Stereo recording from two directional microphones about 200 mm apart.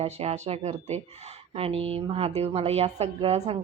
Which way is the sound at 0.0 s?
30° right (ahead or behind).